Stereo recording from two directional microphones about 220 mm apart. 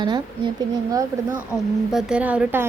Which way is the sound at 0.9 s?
5° right (ahead or behind).